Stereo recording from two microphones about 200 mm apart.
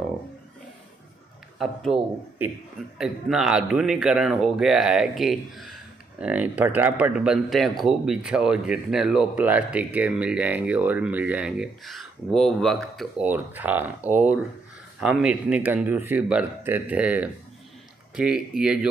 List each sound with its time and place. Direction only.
1.6 s speech: centre (ahead or behind)